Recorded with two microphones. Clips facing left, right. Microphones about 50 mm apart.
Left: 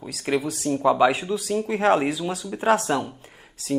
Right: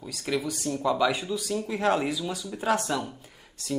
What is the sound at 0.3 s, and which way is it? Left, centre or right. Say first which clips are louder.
Speech: left 5 dB; left.